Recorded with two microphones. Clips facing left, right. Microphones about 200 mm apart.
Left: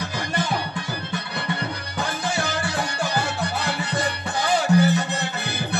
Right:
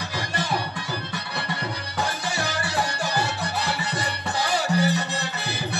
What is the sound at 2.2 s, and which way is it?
Music, 55° left (ahead or behind).